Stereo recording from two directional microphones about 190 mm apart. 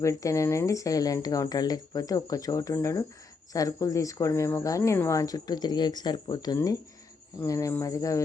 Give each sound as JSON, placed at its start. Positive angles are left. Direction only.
{"t": 0.0, "sound": "speech", "side_deg": 15}